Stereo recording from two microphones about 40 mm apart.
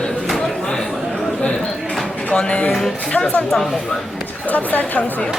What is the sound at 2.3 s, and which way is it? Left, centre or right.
Speech, left.